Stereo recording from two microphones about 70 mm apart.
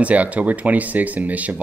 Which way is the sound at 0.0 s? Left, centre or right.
Centre.